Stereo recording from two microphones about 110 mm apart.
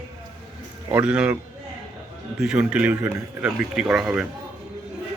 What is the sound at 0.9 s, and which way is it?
Speech, 10° right (ahead or behind).